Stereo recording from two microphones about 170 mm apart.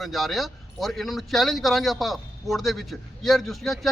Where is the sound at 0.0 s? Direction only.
Centre (ahead or behind).